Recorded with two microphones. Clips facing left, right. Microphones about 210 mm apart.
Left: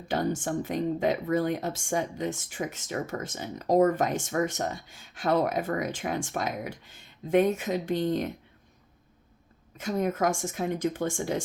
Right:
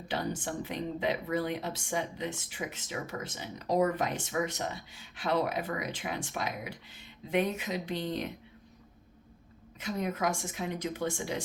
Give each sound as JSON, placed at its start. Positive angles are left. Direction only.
{"t": 0.1, "sound": "speech", "side_deg": 45}
{"t": 9.7, "sound": "speech", "side_deg": 45}